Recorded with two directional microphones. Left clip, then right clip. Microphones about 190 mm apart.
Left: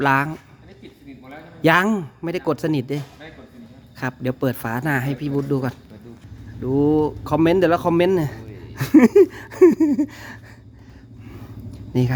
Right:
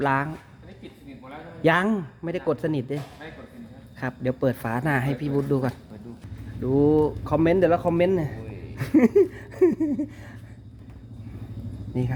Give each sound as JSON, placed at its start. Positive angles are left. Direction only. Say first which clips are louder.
{"t": 0.0, "sound": "a man's voice", "louder": "left 5 dB", "side_deg": 30}
{"t": 1.6, "sound": "a man's voice", "louder": "left 5 dB", "side_deg": 30}
{"t": 4.0, "sound": "speech", "louder": "left 2 dB", "side_deg": 25}
{"t": 7.3, "sound": "a man's voice", "louder": "left 3 dB", "side_deg": 25}